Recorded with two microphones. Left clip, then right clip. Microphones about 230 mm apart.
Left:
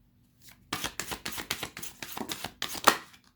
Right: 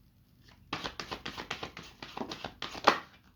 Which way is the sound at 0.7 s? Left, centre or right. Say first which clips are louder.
Left 3 dB; left.